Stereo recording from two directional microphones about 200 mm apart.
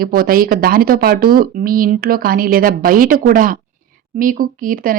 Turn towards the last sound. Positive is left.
turn(degrees=-45)  # may be behind; listen again after turning